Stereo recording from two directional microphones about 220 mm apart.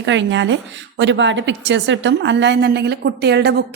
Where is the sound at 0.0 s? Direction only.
55° right (ahead or behind).